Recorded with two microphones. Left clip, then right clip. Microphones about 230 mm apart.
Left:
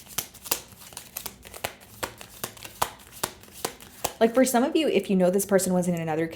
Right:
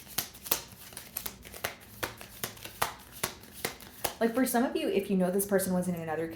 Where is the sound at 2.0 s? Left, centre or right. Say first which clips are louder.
Left 4 dB; left.